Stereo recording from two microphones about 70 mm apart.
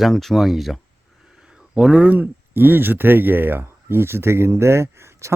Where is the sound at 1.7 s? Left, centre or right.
Centre.